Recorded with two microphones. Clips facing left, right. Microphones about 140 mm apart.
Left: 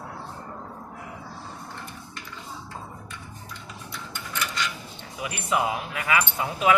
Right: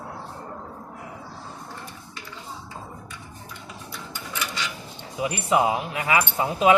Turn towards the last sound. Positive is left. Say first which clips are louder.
# right 4 dB
turn(degrees=-25)  # may be behind; listen again after turning